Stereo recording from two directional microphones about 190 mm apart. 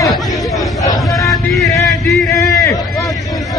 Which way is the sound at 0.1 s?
Centre (ahead or behind).